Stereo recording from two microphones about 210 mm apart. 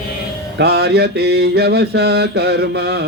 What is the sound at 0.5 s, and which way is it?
Mantra, 50° right (ahead or behind).